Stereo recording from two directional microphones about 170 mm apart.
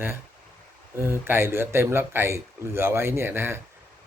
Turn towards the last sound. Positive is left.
turn(degrees=-15)  # may be behind; listen again after turning